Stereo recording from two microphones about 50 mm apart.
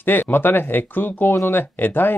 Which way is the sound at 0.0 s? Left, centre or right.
Left.